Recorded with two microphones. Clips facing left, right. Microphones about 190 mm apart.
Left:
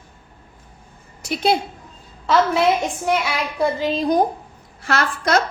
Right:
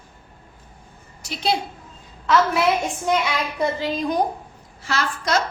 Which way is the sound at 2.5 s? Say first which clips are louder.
Left 2 dB; 15° left (ahead or behind).